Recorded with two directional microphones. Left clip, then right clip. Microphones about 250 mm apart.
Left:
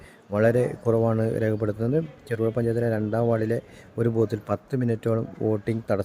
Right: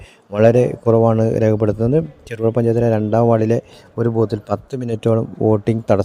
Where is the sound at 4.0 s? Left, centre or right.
Centre.